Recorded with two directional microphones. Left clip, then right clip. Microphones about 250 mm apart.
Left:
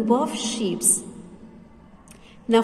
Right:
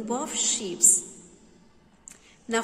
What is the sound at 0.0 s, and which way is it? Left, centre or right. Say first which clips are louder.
Speech: left 7 dB; centre.